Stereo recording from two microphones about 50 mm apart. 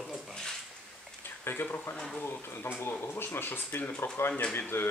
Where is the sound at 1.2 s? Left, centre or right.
Left.